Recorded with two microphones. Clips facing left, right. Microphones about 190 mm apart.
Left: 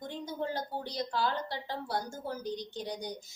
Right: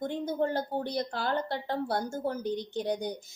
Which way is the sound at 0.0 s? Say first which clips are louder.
Right 7 dB; 50° right (ahead or behind).